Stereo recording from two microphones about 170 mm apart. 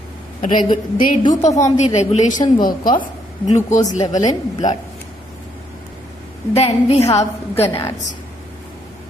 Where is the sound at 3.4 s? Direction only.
45° left (ahead or behind).